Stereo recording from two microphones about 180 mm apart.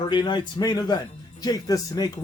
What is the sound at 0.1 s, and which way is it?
Speech, 25° left (ahead or behind).